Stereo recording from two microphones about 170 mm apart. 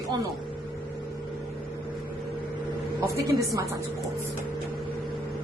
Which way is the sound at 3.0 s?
20° right (ahead or behind).